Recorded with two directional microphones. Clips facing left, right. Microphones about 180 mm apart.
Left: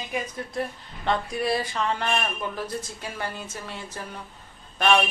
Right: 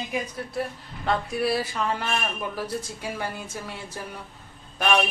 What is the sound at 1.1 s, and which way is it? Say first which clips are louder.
Speech: even; 5° right (ahead or behind).